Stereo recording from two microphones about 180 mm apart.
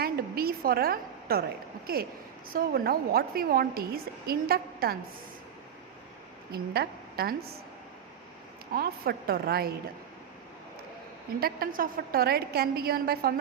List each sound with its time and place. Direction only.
0.0 s a sound: 60° right (ahead or behind)
1.9 s a woman's voice: 55° right (ahead or behind)
6.5 s a woman's voice: 60° right (ahead or behind)
8.7 s a woman's voice: 55° right (ahead or behind)
11.3 s a woman's voice: 55° right (ahead or behind)